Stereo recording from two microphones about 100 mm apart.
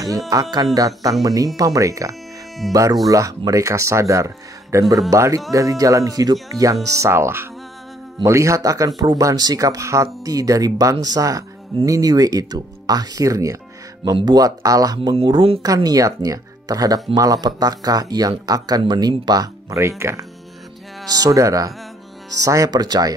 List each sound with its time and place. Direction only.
0.3 s speech: 35° right (ahead or behind)
14.1 s speech: 45° right (ahead or behind)
15.1 s speech: 65° right (ahead or behind)
15.6 s speech: 40° right (ahead or behind)